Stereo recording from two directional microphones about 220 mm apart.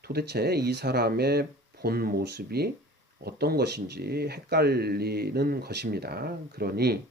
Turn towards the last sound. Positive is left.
turn(degrees=-45)  # may be behind; listen again after turning